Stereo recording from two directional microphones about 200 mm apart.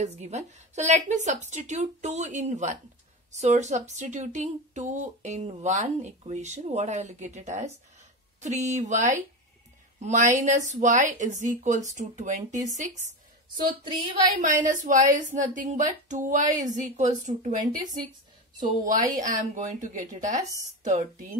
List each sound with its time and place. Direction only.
0.0 s speech: 35° right (ahead or behind)
13.8 s speech: 25° right (ahead or behind)
14.4 s speech: 40° right (ahead or behind)
19.1 s speech: 40° right (ahead or behind)